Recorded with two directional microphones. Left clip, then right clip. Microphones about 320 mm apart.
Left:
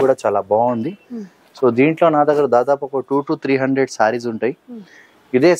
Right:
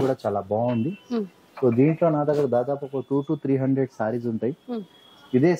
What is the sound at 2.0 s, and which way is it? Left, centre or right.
Speech, centre.